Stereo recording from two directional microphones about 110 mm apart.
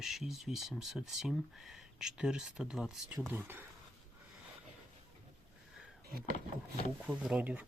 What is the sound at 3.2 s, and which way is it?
Speech, 20° right (ahead or behind).